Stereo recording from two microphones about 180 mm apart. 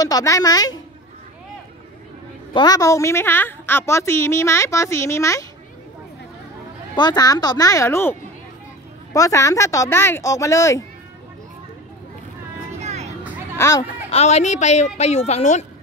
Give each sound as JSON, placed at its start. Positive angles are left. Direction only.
{"t": 0.0, "sound": "speech", "side_deg": 20}
{"t": 2.5, "sound": "a woman's voice", "side_deg": 20}
{"t": 7.0, "sound": "a woman's voice", "side_deg": 20}
{"t": 12.8, "sound": "vehicle", "side_deg": -40}
{"t": 13.6, "sound": "a child's voice", "side_deg": 15}
{"t": 14.1, "sound": "a woman's voice", "side_deg": 35}